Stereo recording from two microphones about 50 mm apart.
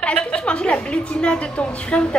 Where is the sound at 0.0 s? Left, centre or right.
Centre.